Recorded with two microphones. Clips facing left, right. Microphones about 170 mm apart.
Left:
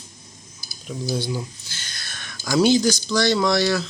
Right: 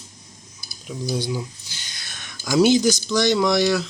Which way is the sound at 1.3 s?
15° right (ahead or behind).